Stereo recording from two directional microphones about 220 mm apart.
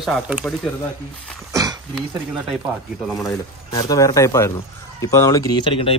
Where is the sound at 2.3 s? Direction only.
5° right (ahead or behind).